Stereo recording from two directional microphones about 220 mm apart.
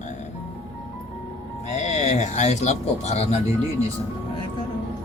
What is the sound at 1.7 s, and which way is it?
Speech, 30° left (ahead or behind).